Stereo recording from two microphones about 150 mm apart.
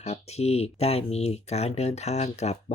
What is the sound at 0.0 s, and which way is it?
Speech, 45° left (ahead or behind).